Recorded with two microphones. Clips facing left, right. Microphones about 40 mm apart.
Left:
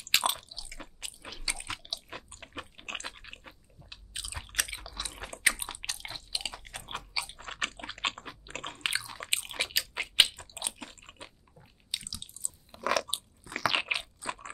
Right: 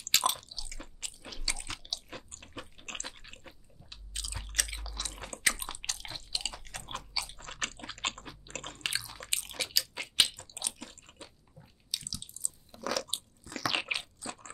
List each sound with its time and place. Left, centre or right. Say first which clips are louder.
0.0 s chewing: left 1 dB; left
11.9 s a sound: left 1 dB; left
12.4 s biting: left 5 dB; left
13.0 s biting: left 2 dB; centre
13.7 s crunch: left 3 dB; centre